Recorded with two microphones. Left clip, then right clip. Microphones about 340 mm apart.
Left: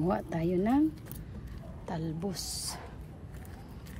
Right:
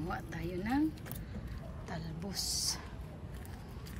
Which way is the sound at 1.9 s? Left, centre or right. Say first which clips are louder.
Left 7 dB; centre.